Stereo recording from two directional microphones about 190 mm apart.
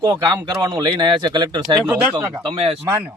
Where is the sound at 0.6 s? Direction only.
25° right (ahead or behind).